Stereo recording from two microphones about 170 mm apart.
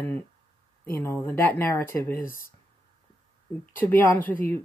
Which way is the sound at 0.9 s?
15° left (ahead or behind).